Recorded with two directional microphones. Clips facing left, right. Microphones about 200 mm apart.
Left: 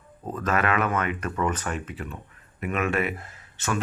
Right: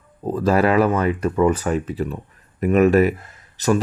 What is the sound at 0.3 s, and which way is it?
Speech, 35° right (ahead or behind).